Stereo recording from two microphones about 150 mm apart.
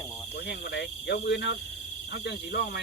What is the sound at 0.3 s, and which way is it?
Speech, 90° left.